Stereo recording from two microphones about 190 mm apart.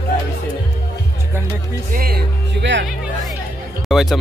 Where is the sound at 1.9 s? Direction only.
55° right (ahead or behind).